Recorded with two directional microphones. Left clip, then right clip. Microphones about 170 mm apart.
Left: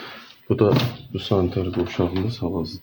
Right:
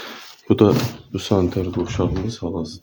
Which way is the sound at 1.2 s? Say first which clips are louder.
Right 2 dB; 25° right (ahead or behind).